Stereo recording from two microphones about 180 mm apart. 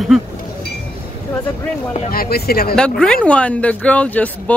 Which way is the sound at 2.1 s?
55° left (ahead or behind).